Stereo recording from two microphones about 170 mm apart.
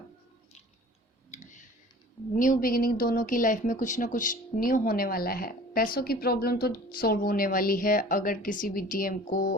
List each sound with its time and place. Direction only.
1.3 s clicking: 45° left (ahead or behind)
2.3 s speech: 50° left (ahead or behind)